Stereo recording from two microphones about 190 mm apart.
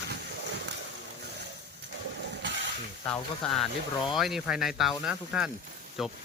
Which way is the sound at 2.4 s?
70° right (ahead or behind).